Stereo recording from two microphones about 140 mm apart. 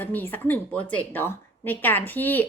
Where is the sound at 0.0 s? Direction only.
15° left (ahead or behind).